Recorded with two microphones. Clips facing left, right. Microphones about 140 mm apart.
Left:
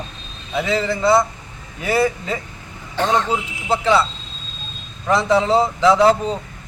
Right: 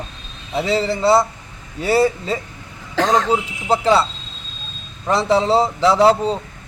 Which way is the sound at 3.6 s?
35° right (ahead or behind).